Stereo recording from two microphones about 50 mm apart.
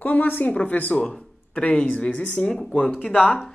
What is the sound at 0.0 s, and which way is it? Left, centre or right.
Speech, left.